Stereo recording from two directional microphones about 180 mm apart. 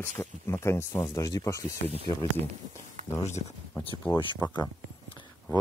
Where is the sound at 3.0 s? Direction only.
40° right (ahead or behind).